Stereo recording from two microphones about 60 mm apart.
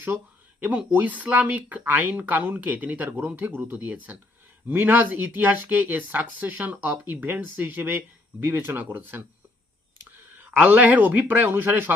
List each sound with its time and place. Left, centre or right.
0.9 s speech: right
10.4 s speech: right